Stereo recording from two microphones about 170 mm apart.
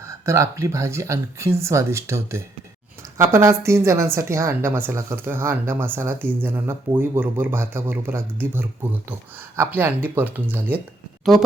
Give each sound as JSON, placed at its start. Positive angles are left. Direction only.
{"t": 0.0, "sound": "a woman's voice", "side_deg": -15}